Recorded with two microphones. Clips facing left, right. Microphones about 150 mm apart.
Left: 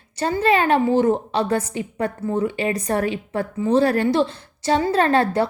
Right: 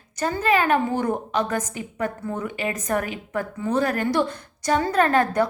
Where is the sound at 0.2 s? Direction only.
30° left (ahead or behind).